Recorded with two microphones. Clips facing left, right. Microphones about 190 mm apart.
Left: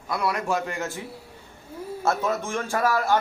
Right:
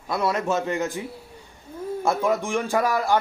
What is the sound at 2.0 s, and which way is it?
A man's voice, 15° right (ahead or behind).